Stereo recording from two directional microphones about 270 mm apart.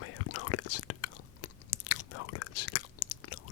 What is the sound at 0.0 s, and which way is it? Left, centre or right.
Whispering, left.